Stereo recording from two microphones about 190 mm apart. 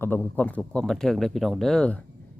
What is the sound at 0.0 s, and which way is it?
Speech, 10° left (ahead or behind).